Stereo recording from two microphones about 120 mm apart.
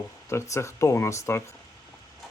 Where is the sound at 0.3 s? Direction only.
25° left (ahead or behind).